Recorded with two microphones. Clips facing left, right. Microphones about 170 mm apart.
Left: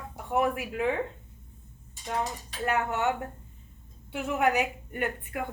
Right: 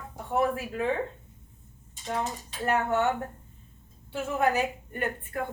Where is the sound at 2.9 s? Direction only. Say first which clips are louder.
Right 2 dB; 15° left (ahead or behind).